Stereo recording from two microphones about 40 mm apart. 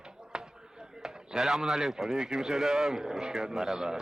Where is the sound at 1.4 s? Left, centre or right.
Centre.